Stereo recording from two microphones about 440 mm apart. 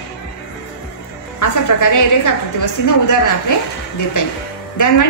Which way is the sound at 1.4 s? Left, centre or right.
Left.